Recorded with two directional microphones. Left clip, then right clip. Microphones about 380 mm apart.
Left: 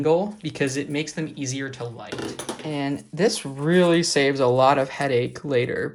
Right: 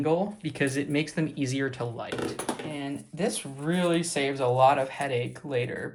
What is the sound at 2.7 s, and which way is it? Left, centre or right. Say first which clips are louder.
A woman's voice: left 8 dB; centre.